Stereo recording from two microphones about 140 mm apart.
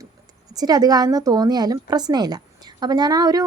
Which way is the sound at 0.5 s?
30° right (ahead or behind).